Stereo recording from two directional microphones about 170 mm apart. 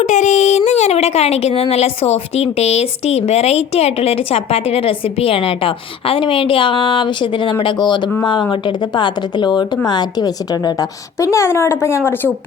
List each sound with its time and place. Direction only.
0.0 s a woman's voice: 45° left (ahead or behind); by 12.3 s 15° left (ahead or behind)